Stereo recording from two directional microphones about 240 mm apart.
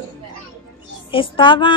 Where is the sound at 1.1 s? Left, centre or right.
Left.